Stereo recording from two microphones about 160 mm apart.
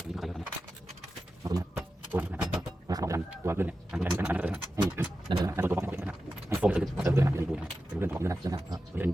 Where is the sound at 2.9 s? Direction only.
20° right (ahead or behind).